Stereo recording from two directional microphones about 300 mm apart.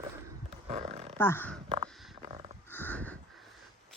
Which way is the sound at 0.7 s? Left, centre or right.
Centre.